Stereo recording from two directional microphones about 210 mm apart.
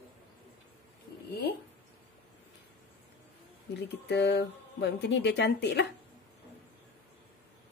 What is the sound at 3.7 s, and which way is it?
Speech, 55° left (ahead or behind).